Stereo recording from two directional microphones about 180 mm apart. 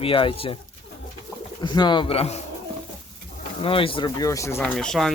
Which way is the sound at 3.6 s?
30° left (ahead or behind).